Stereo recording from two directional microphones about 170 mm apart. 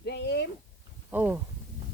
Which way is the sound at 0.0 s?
80° left.